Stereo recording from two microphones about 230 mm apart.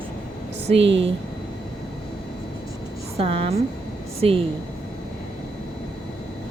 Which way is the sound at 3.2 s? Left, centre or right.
Right.